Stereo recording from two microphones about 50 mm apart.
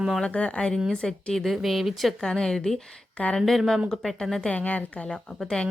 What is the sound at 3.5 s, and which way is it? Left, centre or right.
Speech, centre.